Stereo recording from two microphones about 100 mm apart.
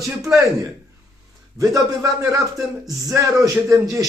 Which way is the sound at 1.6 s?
35° right (ahead or behind).